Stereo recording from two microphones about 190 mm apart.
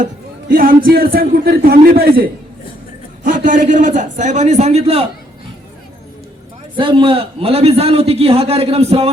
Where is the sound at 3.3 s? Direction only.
45° right (ahead or behind).